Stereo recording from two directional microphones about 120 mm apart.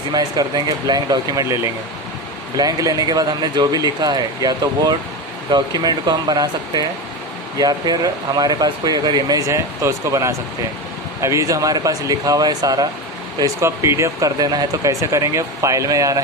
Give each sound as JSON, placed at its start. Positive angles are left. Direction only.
{"t": 0.1, "sound": "speech", "side_deg": -35}